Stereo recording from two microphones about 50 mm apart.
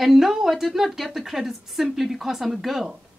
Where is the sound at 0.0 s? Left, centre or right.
Centre.